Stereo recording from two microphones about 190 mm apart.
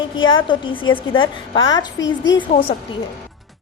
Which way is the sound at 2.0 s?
75° left (ahead or behind).